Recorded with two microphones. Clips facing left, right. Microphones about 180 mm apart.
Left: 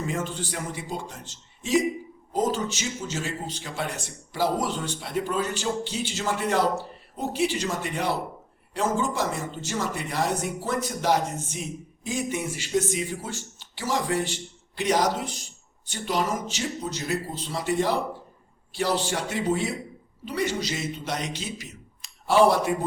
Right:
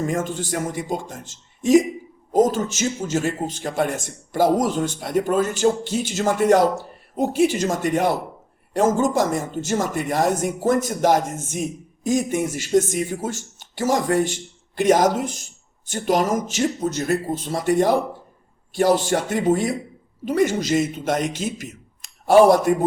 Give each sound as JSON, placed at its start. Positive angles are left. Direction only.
{"t": 0.0, "sound": "a man's voice", "side_deg": -45}